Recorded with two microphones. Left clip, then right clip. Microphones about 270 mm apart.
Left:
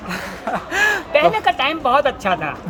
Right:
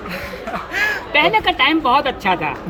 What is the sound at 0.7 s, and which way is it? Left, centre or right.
Speech, centre.